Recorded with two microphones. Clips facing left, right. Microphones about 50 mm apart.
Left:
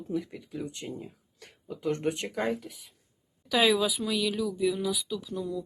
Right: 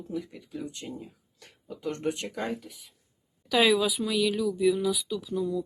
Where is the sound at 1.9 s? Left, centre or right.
Left.